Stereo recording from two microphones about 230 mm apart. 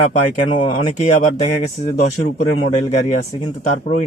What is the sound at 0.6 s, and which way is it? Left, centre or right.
Speech, left.